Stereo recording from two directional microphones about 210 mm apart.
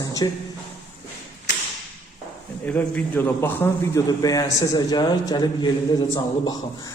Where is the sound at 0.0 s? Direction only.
15° left (ahead or behind).